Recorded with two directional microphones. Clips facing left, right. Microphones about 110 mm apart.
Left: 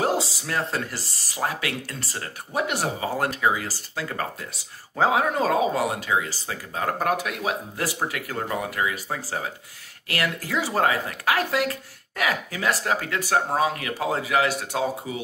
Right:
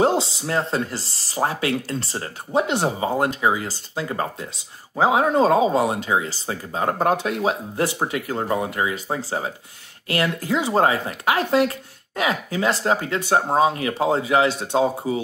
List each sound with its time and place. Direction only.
0.0 s speech: 25° right (ahead or behind)